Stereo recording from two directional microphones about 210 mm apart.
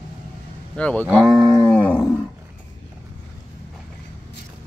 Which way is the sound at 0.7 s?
5° left (ahead or behind).